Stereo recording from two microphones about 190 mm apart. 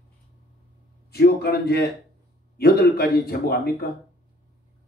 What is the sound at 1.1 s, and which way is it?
A man's voice, 55° left (ahead or behind).